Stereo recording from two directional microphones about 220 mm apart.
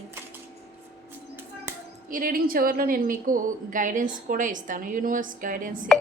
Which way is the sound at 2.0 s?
40° right (ahead or behind).